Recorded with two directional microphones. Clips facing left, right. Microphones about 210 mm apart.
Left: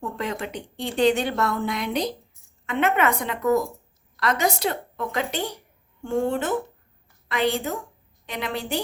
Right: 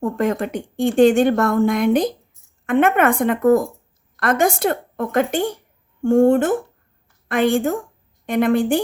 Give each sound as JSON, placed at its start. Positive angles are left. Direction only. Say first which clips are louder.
{"t": 0.0, "sound": "a woman's voice", "louder": "right 9 dB", "side_deg": -50}